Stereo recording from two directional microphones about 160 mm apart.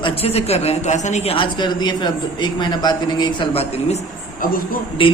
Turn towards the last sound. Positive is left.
turn(degrees=30)  # may be behind; listen again after turning